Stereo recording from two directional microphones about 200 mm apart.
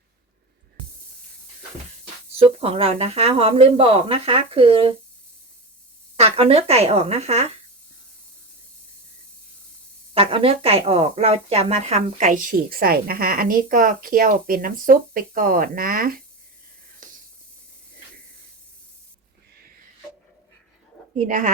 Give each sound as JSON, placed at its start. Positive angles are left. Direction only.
{"t": 2.3, "sound": "speech", "side_deg": -30}
{"t": 6.1, "sound": "speech", "side_deg": -30}
{"t": 10.2, "sound": "a woman's voice", "side_deg": -30}
{"t": 21.2, "sound": "speech", "side_deg": -40}